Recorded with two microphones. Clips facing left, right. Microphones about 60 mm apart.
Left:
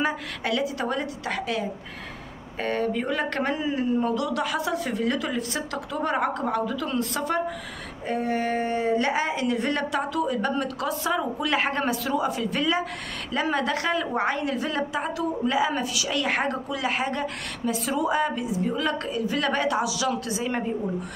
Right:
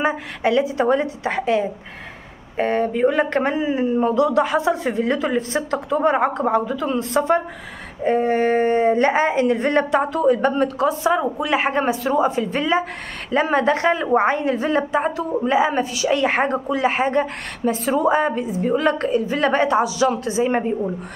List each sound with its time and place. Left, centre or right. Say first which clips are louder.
0.0 s a woman's voice: right 6 dB; right